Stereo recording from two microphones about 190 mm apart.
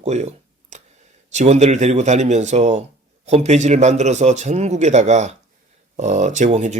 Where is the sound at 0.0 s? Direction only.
35° right (ahead or behind).